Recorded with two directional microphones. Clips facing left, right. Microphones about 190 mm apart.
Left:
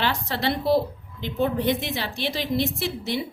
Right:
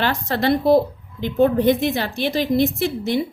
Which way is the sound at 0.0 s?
45° right (ahead or behind).